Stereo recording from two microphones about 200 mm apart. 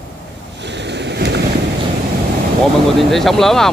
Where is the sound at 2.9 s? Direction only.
Centre (ahead or behind).